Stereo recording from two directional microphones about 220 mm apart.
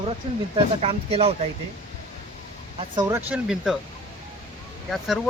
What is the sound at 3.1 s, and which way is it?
Speech, 5° right (ahead or behind).